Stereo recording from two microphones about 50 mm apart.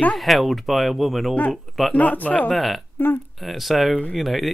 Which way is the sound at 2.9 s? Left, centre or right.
Left.